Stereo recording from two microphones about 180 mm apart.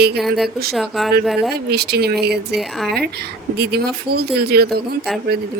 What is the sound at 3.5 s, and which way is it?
Speech, 65° right (ahead or behind).